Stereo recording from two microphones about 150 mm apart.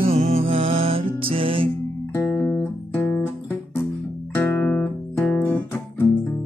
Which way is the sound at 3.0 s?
15° left (ahead or behind).